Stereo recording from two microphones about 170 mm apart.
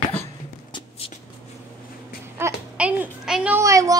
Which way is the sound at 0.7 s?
30° left (ahead or behind).